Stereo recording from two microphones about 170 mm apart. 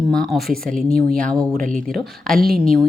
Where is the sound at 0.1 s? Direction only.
Centre (ahead or behind).